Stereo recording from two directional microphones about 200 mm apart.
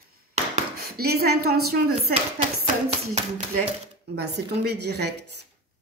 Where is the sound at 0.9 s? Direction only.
50° right (ahead or behind).